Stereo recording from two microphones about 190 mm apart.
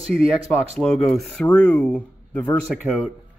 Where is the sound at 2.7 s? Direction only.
5° right (ahead or behind).